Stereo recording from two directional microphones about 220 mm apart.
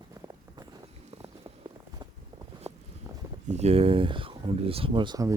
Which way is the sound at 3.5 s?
30° right (ahead or behind).